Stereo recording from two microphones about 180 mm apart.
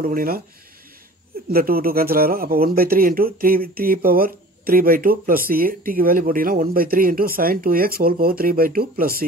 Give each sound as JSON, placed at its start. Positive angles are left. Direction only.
{"t": 0.0, "sound": "speech", "side_deg": -55}
{"t": 1.5, "sound": "speech", "side_deg": -55}